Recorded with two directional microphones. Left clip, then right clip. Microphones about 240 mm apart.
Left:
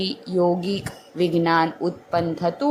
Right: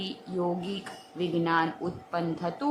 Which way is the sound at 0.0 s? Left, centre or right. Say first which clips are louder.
Left 10 dB; centre.